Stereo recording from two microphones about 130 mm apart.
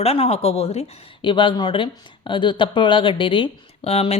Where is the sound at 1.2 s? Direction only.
35° left (ahead or behind).